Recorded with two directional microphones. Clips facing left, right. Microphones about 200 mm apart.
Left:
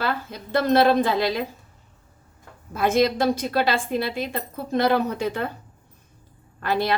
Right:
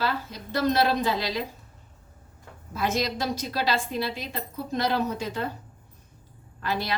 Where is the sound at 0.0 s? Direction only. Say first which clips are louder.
Left 2 dB; 55° left (ahead or behind).